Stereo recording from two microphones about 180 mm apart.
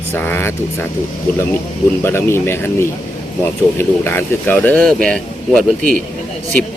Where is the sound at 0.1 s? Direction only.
10° left (ahead or behind).